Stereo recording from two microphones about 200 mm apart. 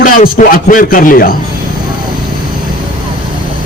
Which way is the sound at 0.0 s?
40° left (ahead or behind).